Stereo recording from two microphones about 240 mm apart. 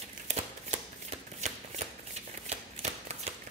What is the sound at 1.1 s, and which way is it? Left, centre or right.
Shuffling cards, right.